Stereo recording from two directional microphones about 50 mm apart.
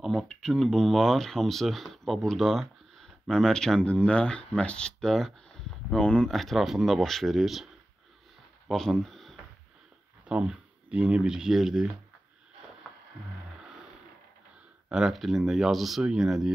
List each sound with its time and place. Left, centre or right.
0.3 s speech: centre
3.8 s speech: left
6.3 s speech: centre
7.3 s speech: centre
8.6 s a sound: centre
10.2 s speech: right
14.9 s speech: centre